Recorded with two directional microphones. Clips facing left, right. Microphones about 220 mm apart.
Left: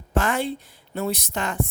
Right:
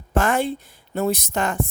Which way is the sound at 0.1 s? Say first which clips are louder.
Right 3 dB; 45° right (ahead or behind).